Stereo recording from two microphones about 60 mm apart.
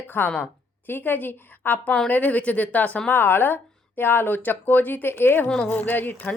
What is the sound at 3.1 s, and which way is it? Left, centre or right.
Speech, left.